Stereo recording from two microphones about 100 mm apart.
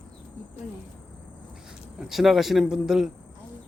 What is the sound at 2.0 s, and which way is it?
Speech, 5° right (ahead or behind).